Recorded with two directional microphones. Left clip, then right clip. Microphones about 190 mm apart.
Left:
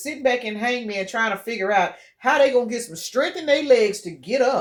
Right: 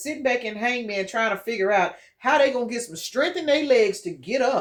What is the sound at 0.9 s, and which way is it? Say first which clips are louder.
Speech: left 1 dB; 30° left (ahead or behind).